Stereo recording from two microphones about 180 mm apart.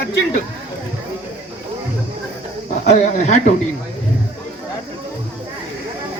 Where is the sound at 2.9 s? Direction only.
40° left (ahead or behind).